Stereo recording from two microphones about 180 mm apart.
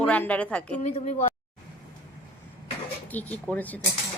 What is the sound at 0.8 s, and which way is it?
Speech, 40° left (ahead or behind).